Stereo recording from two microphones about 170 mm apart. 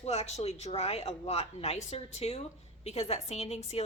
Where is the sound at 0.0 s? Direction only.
40° left (ahead or behind).